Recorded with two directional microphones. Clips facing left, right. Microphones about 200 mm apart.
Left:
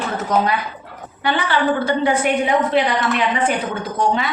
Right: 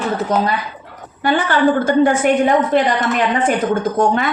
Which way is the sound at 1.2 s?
45° right (ahead or behind).